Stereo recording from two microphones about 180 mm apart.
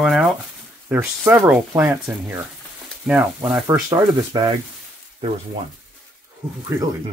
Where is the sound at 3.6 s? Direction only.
20° right (ahead or behind).